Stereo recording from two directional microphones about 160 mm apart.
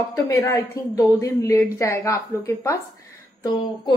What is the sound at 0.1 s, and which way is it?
A woman's voice, 15° left (ahead or behind).